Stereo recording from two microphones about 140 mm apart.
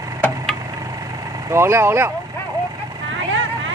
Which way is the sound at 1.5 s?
20° right (ahead or behind).